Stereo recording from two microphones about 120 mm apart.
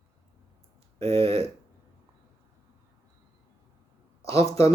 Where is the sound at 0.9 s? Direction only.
55° right (ahead or behind).